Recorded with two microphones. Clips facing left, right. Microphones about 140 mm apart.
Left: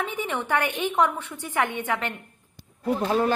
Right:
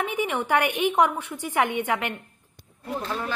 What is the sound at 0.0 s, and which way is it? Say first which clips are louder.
A woman's voice: right 2 dB; 10° right (ahead or behind).